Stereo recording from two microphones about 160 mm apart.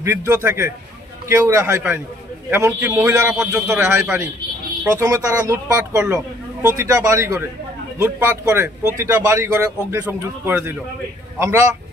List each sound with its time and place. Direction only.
0.0 s a man's voice: 20° right (ahead or behind)